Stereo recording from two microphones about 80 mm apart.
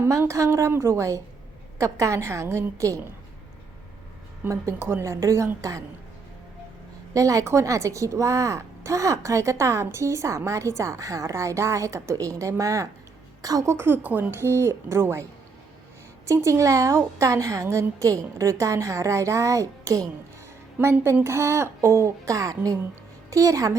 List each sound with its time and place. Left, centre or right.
0.0 s speech: right
4.4 s speech: right
5.2 s a woman's voice: right
7.1 s a woman's voice: right
13.7 s a woman's voice: right
20.7 s a woman's voice: right